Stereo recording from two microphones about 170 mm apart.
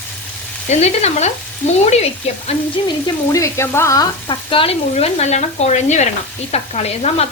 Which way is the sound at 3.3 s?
15° left (ahead or behind).